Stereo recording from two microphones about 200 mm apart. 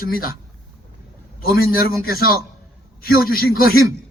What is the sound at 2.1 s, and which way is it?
A man's voice, 50° left (ahead or behind).